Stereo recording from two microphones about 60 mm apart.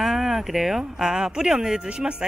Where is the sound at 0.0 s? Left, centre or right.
Centre.